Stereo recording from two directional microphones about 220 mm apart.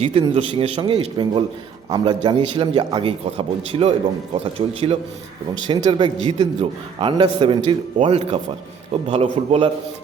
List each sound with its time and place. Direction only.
0.0 s a man's voice: 25° right (ahead or behind)